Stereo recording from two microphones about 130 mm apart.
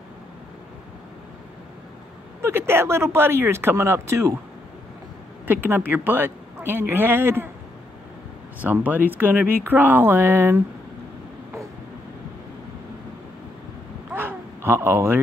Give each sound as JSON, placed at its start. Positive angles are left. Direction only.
{"t": 2.4, "sound": "speech", "side_deg": -20}
{"t": 5.5, "sound": "speech", "side_deg": -15}
{"t": 8.5, "sound": "speech", "side_deg": -15}
{"t": 14.1, "sound": "a sound", "side_deg": -15}